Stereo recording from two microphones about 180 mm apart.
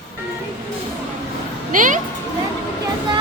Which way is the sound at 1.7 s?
45° right (ahead or behind).